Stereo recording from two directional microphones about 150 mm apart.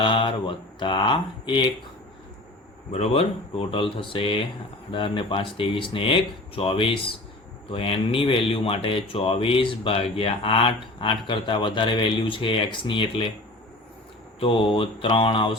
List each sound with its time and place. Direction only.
0.0 s speech: 35° left (ahead or behind)
2.9 s speech: 40° left (ahead or behind)
14.3 s speech: 35° left (ahead or behind)